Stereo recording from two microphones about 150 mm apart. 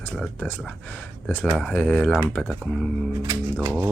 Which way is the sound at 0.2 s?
10° left (ahead or behind).